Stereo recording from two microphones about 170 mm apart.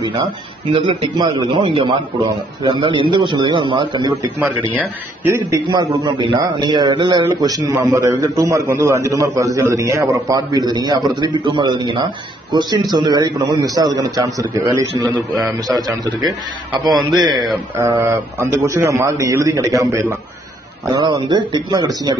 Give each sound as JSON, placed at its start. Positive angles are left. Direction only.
{"t": 0.7, "sound": "a man's voice", "side_deg": -30}
{"t": 4.4, "sound": "a man's voice", "side_deg": -10}
{"t": 15.4, "sound": "a man's voice", "side_deg": 0}
{"t": 17.2, "sound": "a man's voice", "side_deg": -25}